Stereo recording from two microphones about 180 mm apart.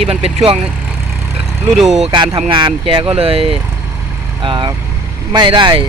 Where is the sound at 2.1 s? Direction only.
30° right (ahead or behind).